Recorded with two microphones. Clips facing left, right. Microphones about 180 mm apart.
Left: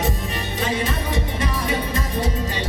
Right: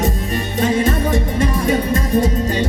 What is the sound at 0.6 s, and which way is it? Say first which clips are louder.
Music: right 8 dB; 45° right (ahead or behind).